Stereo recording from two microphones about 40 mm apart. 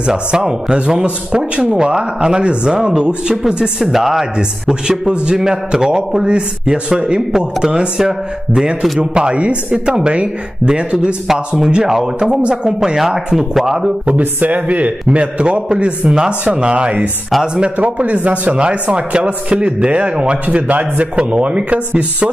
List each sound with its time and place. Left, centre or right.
0.0 s a man's voice: right
3.8 s a man's voice: centre
9.0 s a man's voice: right
14.2 s speech: right
15.0 s a man's voice: right
16.1 s a man's voice: centre; by 21.1 s right
21.2 s speech: right